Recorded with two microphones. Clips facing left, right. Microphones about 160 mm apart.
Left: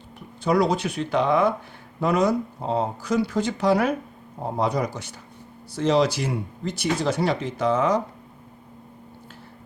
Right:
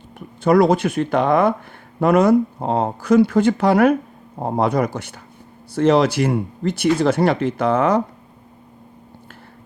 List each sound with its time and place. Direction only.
0.4 s speech: 55° right (ahead or behind)